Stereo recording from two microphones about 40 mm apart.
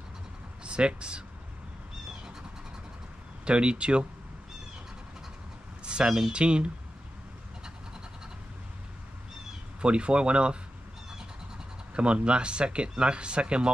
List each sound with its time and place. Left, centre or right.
0.7 s speech: right
3.4 s speech: right
5.9 s a sound: right
6.3 s speech: right
9.8 s speech: right
11.9 s speech: right